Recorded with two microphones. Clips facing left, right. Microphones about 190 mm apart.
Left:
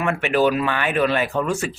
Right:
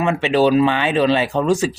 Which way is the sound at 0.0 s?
25° right (ahead or behind).